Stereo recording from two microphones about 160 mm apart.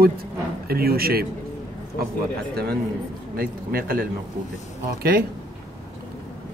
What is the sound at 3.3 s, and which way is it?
Speech, 65° right (ahead or behind).